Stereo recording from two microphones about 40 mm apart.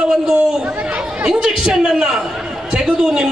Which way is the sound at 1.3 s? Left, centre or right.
Centre.